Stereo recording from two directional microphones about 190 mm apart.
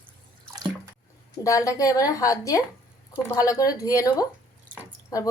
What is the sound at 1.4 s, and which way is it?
A woman's voice, 15° left (ahead or behind).